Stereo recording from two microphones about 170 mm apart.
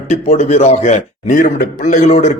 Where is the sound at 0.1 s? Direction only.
45° left (ahead or behind).